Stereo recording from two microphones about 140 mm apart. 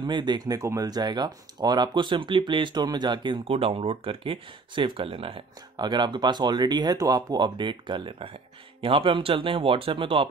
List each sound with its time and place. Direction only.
0.0 s speech: 30° right (ahead or behind)